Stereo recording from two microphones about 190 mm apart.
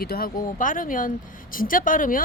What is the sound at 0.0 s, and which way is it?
Speech, 50° left (ahead or behind).